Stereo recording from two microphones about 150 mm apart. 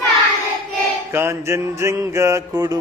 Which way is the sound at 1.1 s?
15° right (ahead or behind).